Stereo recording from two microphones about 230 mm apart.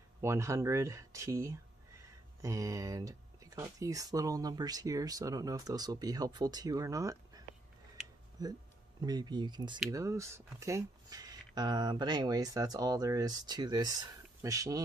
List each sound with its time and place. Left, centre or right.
0.2 s speech: centre